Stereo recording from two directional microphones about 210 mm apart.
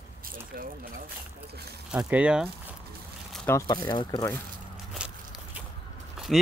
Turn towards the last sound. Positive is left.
turn(degrees=0)  # may be behind; listen again after turning